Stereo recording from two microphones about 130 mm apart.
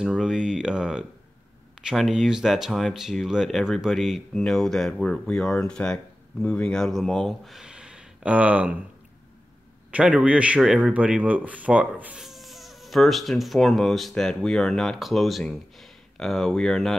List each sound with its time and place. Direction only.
0.0 s a man's voice: 5° right (ahead or behind)
9.8 s a man's voice: 10° right (ahead or behind)